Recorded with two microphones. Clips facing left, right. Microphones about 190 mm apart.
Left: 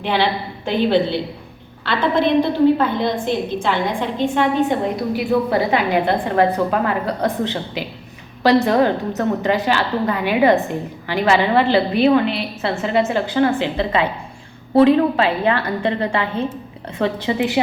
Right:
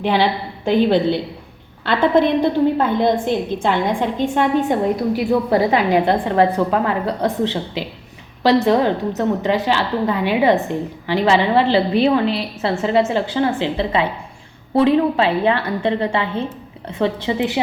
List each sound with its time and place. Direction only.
0.0 s a woman's voice: 40° right (ahead or behind); by 17.5 s 25° right (ahead or behind)